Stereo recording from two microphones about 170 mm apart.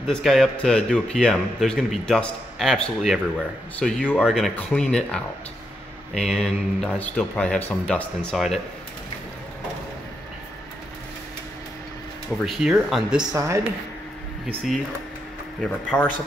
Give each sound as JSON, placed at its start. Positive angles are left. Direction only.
{"t": 0.0, "sound": "a man's voice", "side_deg": 0}
{"t": 12.4, "sound": "a man's voice", "side_deg": -5}
{"t": 13.3, "sound": "speech", "side_deg": -15}
{"t": 15.6, "sound": "a man's voice", "side_deg": 10}